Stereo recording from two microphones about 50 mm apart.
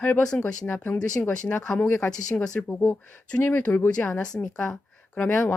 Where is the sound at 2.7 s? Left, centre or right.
Left.